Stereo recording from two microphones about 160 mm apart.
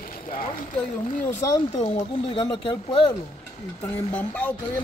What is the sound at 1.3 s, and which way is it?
Speech, 15° left (ahead or behind).